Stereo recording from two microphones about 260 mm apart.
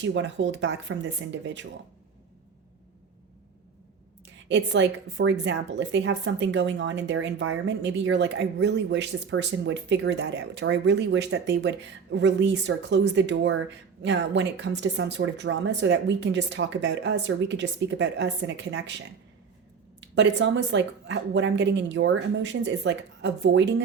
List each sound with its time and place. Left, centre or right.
0.0 s a woman's voice: right
4.4 s a woman's voice: right